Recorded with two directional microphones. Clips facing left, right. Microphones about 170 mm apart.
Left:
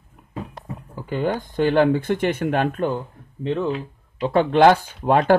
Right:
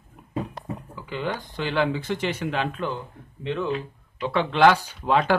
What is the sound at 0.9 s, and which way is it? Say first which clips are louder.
Speech: left 7 dB; 45° left (ahead or behind).